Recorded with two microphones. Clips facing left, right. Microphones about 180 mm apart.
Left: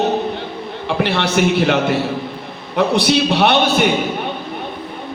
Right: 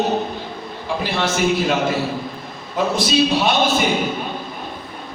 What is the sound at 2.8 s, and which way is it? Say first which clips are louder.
A man's voice: left 3 dB; 65° left (ahead or behind).